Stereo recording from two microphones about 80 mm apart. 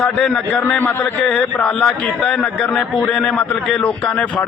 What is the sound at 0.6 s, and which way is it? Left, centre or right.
Speech, left.